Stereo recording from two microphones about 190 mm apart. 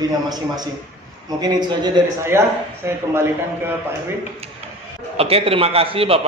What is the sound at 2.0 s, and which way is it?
Speech, 25° right (ahead or behind).